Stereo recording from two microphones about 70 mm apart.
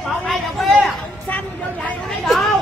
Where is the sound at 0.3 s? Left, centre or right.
Centre.